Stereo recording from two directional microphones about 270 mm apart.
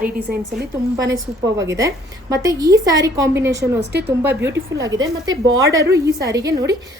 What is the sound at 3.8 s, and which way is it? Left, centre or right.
Speech, right.